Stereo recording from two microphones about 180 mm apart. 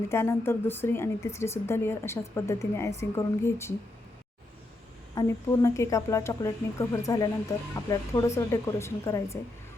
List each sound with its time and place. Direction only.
0.1 s speech: 15° left (ahead or behind)
5.2 s speech: 15° left (ahead or behind)